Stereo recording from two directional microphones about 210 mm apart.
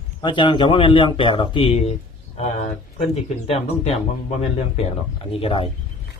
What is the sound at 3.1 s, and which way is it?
A man's voice, 30° left (ahead or behind).